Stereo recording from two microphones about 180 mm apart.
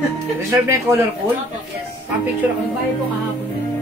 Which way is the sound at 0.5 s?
15° right (ahead or behind).